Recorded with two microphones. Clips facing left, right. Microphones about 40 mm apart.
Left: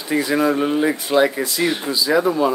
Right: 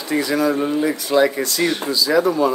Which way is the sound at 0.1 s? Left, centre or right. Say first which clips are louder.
Left 1 dB; centre.